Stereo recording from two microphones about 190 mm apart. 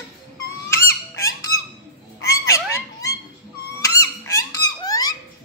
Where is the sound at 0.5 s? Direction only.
15° left (ahead or behind).